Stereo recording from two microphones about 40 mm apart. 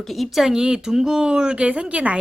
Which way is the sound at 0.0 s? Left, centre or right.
Centre.